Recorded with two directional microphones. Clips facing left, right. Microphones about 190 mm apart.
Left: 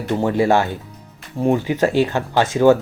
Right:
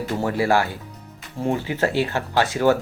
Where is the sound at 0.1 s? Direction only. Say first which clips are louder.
Left 5 dB; 20° left (ahead or behind).